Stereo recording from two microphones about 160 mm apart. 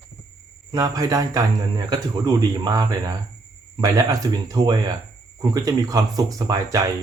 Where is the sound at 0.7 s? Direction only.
25° right (ahead or behind).